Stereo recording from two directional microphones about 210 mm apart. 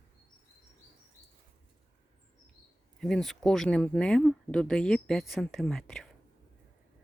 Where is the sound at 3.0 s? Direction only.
Centre (ahead or behind).